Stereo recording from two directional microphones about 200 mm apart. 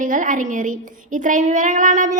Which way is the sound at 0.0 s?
40° right (ahead or behind).